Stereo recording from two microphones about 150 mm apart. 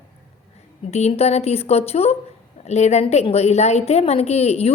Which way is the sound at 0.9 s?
45° left (ahead or behind).